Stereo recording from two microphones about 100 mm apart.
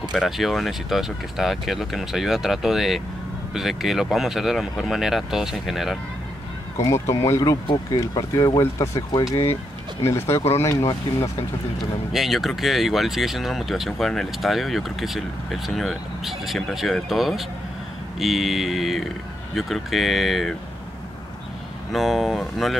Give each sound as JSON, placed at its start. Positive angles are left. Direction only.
{"t": 0.1, "sound": "speech", "side_deg": 0}
{"t": 6.8, "sound": "speech", "side_deg": 30}
{"t": 11.8, "sound": "speech", "side_deg": 0}
{"t": 21.9, "sound": "speech", "side_deg": 0}